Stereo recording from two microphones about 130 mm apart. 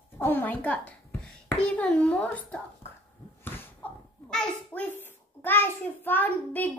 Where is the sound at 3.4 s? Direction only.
15° left (ahead or behind).